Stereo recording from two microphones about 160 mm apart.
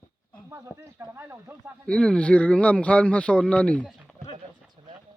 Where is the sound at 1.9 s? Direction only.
5° left (ahead or behind).